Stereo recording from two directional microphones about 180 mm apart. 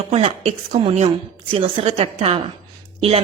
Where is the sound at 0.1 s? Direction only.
35° right (ahead or behind).